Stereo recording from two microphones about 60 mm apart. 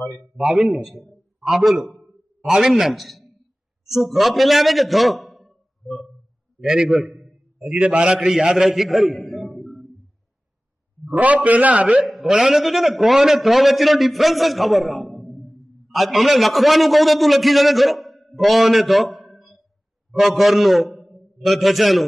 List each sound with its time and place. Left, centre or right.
0.4 s a man's voice: centre
7.7 s a man's voice: right
8.3 s a sound: centre
11.1 s a man's voice: right
12.1 s a man's voice: centre